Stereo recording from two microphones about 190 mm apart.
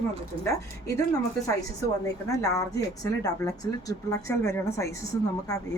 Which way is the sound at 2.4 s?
20° left (ahead or behind).